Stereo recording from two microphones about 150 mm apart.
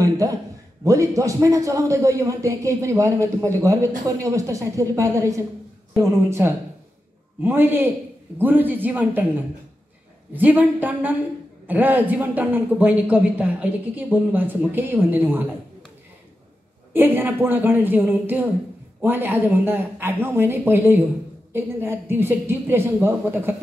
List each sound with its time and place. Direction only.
0.2 s a man's voice: 20° right (ahead or behind)
10.3 s a man's voice: 10° right (ahead or behind)
16.9 s a man's voice: 15° right (ahead or behind)